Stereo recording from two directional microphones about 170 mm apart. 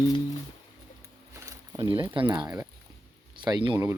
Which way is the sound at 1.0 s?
20° right (ahead or behind).